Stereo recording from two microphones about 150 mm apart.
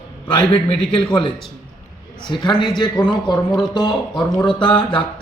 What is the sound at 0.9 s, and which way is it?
A man's voice, 35° left (ahead or behind).